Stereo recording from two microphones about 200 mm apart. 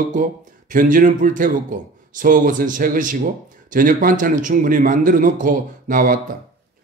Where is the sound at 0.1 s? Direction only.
40° right (ahead or behind).